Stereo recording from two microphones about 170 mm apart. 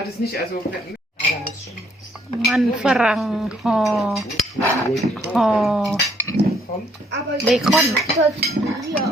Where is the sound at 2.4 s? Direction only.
Centre (ahead or behind).